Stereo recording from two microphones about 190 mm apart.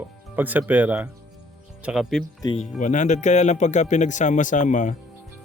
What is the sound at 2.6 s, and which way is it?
Speech, 40° left (ahead or behind).